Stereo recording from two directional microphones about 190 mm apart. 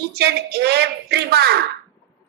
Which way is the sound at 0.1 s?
55° right (ahead or behind).